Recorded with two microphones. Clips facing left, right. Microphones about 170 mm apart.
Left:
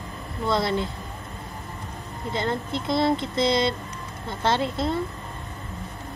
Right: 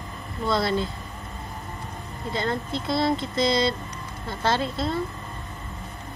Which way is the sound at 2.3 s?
20° left (ahead or behind).